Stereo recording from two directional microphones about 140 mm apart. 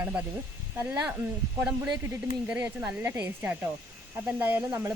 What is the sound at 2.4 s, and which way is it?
Speech, 10° right (ahead or behind).